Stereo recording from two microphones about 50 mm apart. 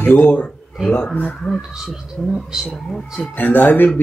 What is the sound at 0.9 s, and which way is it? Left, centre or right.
Speech, left.